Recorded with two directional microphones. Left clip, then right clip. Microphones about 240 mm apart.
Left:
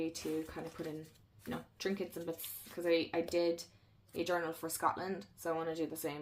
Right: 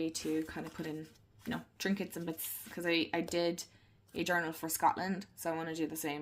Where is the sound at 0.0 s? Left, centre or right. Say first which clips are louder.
Right 3 dB; right.